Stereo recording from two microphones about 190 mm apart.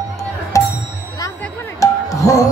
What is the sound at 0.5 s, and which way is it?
Music, 15° left (ahead or behind).